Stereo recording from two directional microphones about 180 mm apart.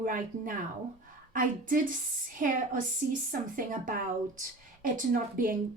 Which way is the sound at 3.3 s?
50° right (ahead or behind).